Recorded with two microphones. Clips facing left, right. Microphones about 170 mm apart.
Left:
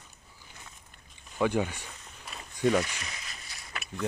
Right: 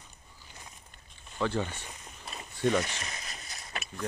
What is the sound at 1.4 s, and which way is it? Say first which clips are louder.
Speech: left 3 dB; 10° left (ahead or behind).